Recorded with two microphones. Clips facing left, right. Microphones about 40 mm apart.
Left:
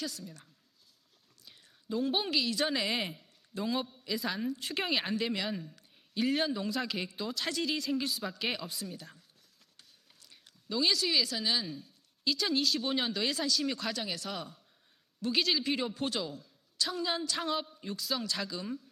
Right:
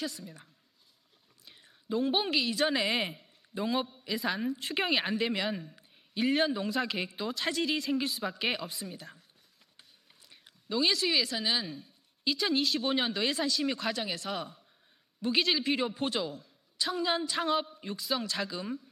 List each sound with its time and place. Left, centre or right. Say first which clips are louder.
0.0 s a man's voice: right 2 dB; centre
1.5 s a sound: right 3 dB; centre
2.0 s a man's voice: right 2 dB; centre
10.2 s a man's voice: right 2 dB; centre